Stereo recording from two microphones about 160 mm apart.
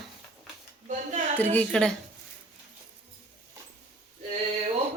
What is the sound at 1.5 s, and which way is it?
Speech, 5° left (ahead or behind).